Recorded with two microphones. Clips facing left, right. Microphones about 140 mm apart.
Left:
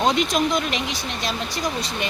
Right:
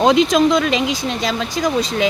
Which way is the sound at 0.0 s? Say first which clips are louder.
Right 7 dB; 90° right.